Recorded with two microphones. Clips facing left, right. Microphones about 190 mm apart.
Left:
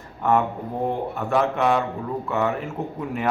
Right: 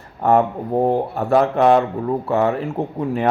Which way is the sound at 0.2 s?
40° right (ahead or behind).